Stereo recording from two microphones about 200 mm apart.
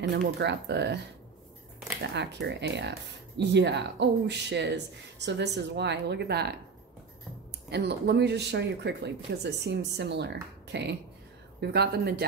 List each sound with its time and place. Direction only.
0.0 s speech: 55° right (ahead or behind)
2.0 s speech: 55° right (ahead or behind)
7.7 s speech: 55° right (ahead or behind)